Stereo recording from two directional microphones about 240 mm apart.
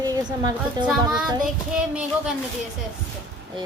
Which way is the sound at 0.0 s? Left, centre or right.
Centre.